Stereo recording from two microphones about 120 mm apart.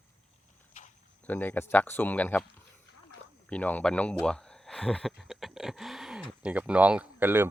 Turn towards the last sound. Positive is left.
turn(degrees=-15)  # may be behind; listen again after turning